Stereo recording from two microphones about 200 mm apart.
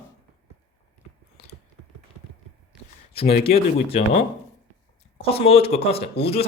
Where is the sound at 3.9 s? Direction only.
30° left (ahead or behind).